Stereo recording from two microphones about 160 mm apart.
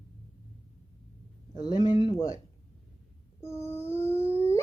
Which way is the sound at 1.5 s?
25° left (ahead or behind).